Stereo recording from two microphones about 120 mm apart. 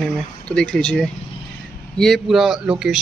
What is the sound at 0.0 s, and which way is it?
Speech, 5° left (ahead or behind).